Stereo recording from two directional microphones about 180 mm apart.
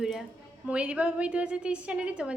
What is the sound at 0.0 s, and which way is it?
A woman's voice, centre (ahead or behind).